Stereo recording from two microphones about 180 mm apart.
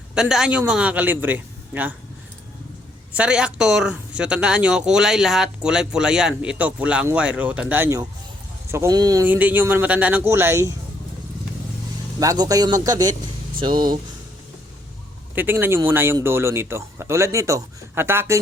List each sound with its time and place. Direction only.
0.1 s speech: 5° right (ahead or behind)
3.1 s speech: 5° right (ahead or behind)
9.2 s speech: 10° right (ahead or behind)
12.2 s speech: 20° right (ahead or behind)
15.4 s speech: 10° right (ahead or behind)